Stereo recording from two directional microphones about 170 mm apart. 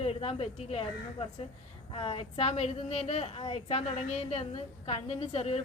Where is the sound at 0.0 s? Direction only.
35° left (ahead or behind).